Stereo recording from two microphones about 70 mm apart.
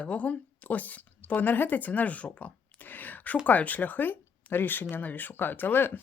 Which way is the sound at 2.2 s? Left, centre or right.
Centre.